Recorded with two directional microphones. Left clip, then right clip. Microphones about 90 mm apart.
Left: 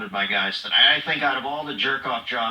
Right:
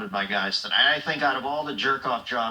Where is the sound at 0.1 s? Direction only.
15° right (ahead or behind).